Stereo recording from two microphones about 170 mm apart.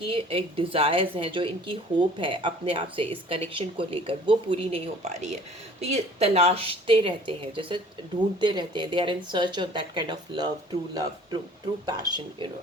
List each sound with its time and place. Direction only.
0.1 s speech: 35° right (ahead or behind)